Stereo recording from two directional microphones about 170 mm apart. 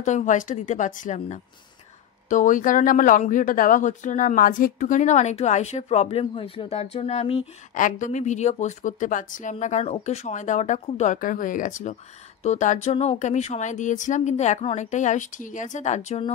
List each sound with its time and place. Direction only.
0.0 s speech: 45° left (ahead or behind)
7.7 s speech: 50° left (ahead or behind)